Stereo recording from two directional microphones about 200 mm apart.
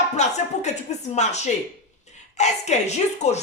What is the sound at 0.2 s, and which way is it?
Speech, 35° left (ahead or behind).